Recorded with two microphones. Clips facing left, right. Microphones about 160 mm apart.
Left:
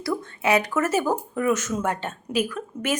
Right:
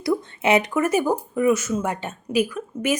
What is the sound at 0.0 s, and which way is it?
Speech, 20° right (ahead or behind).